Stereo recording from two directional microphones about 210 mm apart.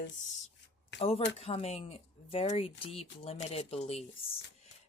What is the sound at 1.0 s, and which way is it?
Speech, 30° left (ahead or behind).